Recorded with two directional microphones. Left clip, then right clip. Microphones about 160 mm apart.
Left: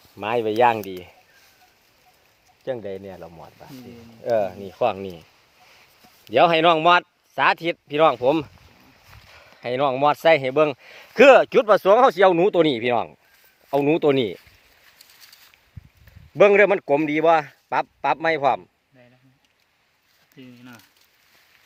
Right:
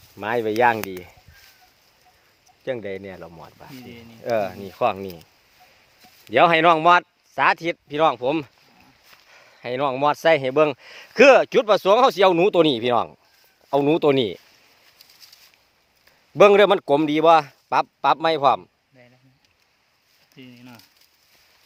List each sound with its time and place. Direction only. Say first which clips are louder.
0.2 s speech: left 1 dB; 5° right (ahead or behind)
2.6 s a man's voice: right 1 dB; 15° right (ahead or behind)
16.3 s a man's voice: right 1 dB; 25° right (ahead or behind)
20.3 s speech: even; 20° right (ahead or behind)